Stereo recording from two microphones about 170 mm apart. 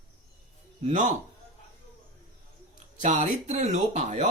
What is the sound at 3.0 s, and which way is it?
Speech, 45° right (ahead or behind).